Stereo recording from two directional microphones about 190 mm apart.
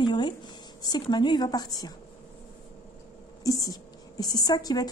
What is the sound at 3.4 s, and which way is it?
Speech, 20° left (ahead or behind).